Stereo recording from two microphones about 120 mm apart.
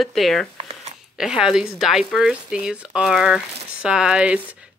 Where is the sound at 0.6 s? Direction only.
65° right (ahead or behind).